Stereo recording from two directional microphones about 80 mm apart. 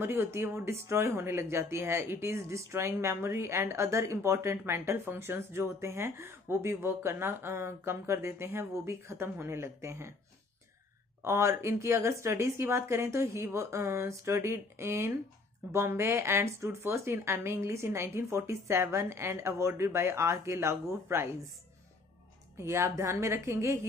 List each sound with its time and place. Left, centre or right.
0.0 s speech: right
11.2 s speech: right
22.6 s speech: right